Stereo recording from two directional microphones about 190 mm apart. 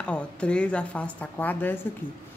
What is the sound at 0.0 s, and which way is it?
A woman's voice, 5° left (ahead or behind).